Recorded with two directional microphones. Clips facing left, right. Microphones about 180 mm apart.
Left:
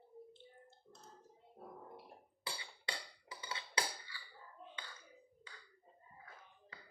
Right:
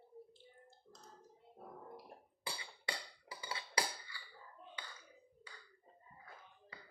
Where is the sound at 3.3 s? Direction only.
30° right (ahead or behind).